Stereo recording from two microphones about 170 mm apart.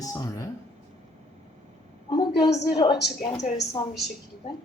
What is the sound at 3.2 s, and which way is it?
Speech, 45° left (ahead or behind).